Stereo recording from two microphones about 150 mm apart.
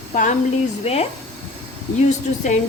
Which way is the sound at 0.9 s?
45° left (ahead or behind).